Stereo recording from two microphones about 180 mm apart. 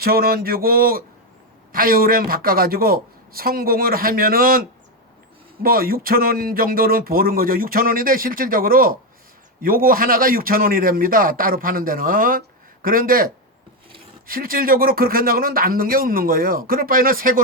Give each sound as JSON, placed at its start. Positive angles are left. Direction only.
{"t": 0.0, "sound": "a woman's voice", "side_deg": -55}
{"t": 5.6, "sound": "speech", "side_deg": -55}